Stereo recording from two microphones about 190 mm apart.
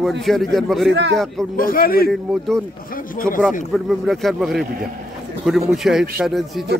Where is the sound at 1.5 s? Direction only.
50° left (ahead or behind).